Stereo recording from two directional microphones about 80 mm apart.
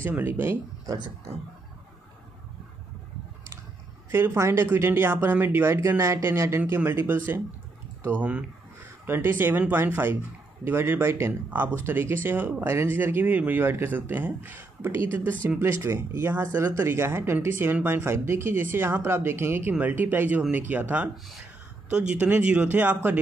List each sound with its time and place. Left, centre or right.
0.0 s speech: right
4.1 s speech: right
5.8 s speech: right
8.2 s speech: centre
9.0 s speech: right
15.6 s speech: right